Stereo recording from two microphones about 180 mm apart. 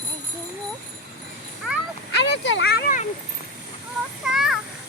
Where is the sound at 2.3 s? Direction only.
80° left; by 3.0 s 65° left (ahead or behind).